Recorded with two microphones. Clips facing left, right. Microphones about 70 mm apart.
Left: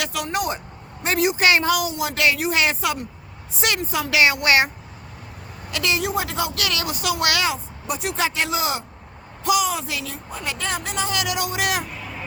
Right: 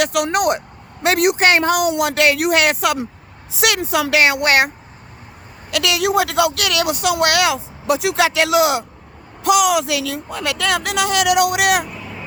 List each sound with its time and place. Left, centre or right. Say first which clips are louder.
0.0 s speech: right 8 dB; right
3.5 s speech: right 6 dB; right
5.7 s a woman's voice: right 6 dB; right